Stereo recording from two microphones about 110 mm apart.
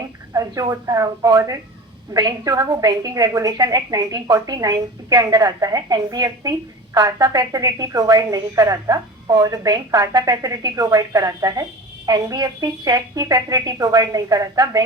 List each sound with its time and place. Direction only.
0.3 s a woman's voice: 30° right (ahead or behind)